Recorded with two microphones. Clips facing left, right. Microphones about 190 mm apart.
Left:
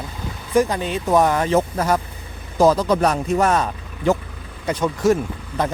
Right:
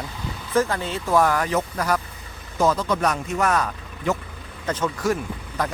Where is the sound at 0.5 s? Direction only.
15° left (ahead or behind).